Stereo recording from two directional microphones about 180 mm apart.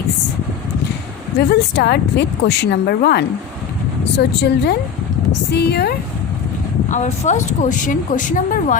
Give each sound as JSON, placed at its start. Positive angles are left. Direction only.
{"t": 1.4, "sound": "a woman's voice", "side_deg": 70}
{"t": 6.8, "sound": "speech", "side_deg": 40}